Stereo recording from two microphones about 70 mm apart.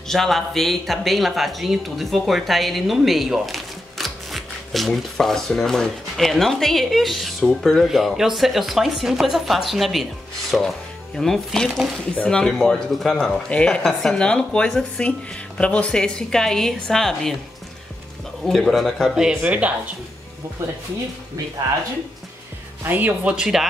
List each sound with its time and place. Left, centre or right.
0.1 s speech: centre
18.4 s speech: centre
19.1 s speech: centre
22.8 s speech: right
23.3 s speech: centre